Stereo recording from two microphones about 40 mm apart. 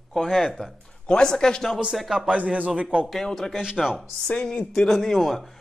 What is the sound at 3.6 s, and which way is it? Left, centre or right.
Speech, centre.